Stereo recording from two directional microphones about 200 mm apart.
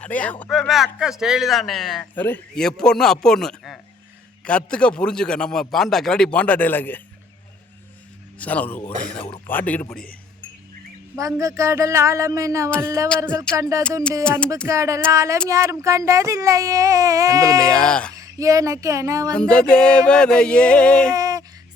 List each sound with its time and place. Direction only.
0.0 s speech: 5° left (ahead or behind)
8.4 s a man's voice: 5° left (ahead or behind)
11.2 s speech: 15° right (ahead or behind)
14.3 s speech: 5° left (ahead or behind)
14.7 s speech: 15° right (ahead or behind)
17.6 s speech: 5° left (ahead or behind)
18.2 s speech: 15° right (ahead or behind)
19.3 s speech: 5° left (ahead or behind)
21.1 s a sound: 15° right (ahead or behind)